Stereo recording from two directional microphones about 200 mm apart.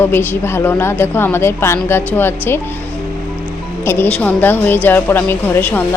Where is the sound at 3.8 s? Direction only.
10° left (ahead or behind).